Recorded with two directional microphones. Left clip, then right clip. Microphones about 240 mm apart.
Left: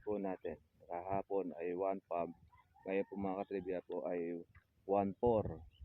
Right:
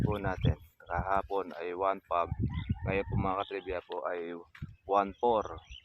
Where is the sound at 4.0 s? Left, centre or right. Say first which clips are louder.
Right 5 dB; right.